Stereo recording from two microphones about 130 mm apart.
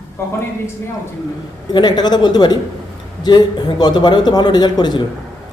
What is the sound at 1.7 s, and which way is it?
Speech, 35° left (ahead or behind).